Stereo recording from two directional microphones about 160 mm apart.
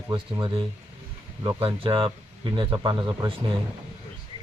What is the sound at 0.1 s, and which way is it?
Speech, 25° right (ahead or behind).